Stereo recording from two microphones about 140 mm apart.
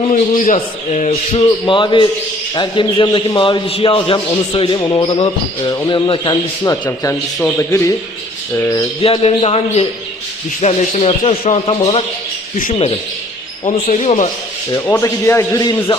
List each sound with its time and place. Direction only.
0.1 s a man's voice: 70° left (ahead or behind)
1.3 s a man's voice: 35° left (ahead or behind)
7.6 s a man's voice: 20° left (ahead or behind)
9.0 s speech: 45° left (ahead or behind)
13.7 s a man's voice: 50° left (ahead or behind)
14.7 s a man's voice: 20° left (ahead or behind)